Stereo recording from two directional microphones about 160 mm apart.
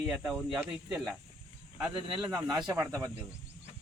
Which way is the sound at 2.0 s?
30° right (ahead or behind).